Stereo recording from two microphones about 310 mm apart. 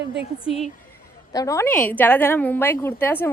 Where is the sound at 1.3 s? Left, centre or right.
Centre.